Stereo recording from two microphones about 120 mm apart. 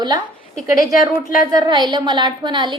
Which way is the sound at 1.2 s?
35° right (ahead or behind).